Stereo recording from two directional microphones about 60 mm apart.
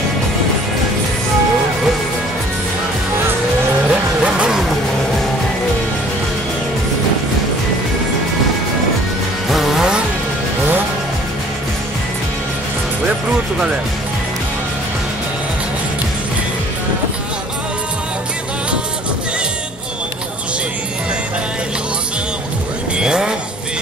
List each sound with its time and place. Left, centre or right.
3.9 s music: centre
9.5 s music: centre
22.9 s vehicle: centre